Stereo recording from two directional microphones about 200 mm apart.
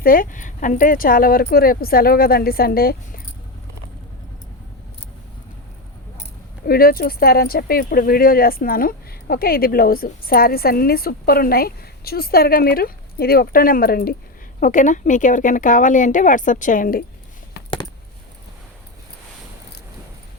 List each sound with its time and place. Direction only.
0.0 s speech: 45° left (ahead or behind)
6.7 s speech: 50° left (ahead or behind)